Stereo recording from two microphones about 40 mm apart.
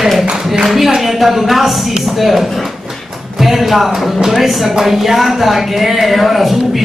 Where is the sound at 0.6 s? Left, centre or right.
Centre.